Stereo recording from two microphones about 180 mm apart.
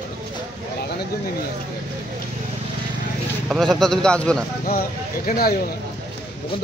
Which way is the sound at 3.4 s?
Centre (ahead or behind).